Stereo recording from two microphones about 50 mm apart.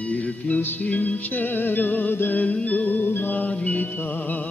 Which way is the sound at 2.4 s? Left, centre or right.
Left.